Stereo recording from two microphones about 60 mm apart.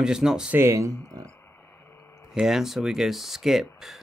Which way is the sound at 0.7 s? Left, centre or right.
Right.